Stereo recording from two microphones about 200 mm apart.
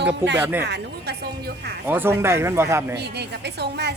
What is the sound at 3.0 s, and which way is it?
Speech, 55° right (ahead or behind).